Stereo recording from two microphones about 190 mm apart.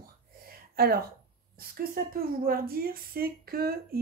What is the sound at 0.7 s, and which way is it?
Speech, 50° right (ahead or behind).